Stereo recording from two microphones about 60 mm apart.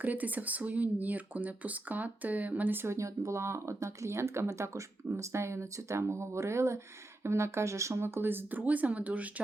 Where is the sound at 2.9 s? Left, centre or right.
Right.